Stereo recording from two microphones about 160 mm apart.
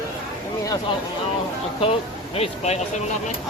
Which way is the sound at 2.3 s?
40° left (ahead or behind).